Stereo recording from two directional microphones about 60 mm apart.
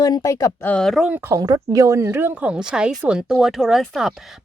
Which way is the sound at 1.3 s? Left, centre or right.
Right.